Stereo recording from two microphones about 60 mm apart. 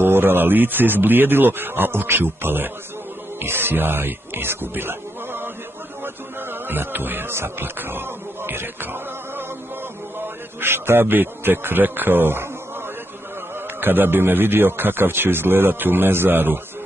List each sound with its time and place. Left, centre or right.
0.0 s a man's voice: right
6.7 s a man's voice: right
10.6 s a man's voice: right
13.7 s a man's voice: right